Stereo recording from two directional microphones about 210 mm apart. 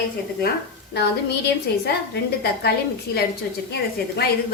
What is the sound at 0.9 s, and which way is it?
A woman's voice, 50° left (ahead or behind).